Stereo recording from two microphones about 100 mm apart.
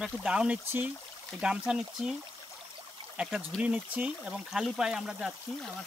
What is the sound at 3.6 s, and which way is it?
Speech, 10° right (ahead or behind).